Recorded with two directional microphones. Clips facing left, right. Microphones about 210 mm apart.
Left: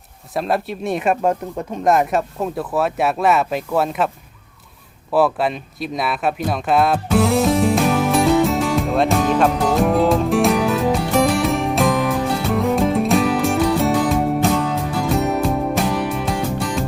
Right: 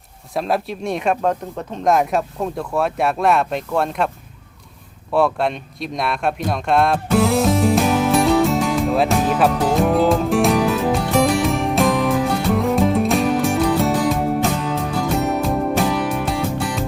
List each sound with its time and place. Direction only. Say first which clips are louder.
0.3 s speech: even; centre (ahead or behind)
5.1 s a sound: left 1 dB; 5° left (ahead or behind)
15.1 s music: left 2 dB; centre (ahead or behind)